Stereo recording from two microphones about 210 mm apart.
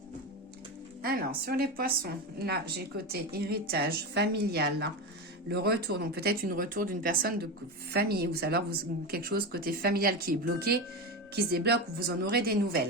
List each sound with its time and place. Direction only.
1.0 s a woman's voice: 45° right (ahead or behind)